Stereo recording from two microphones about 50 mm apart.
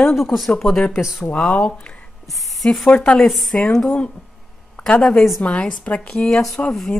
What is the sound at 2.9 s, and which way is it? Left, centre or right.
Speech, left.